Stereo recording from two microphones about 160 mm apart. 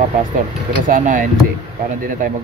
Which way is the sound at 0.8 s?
60° right (ahead or behind).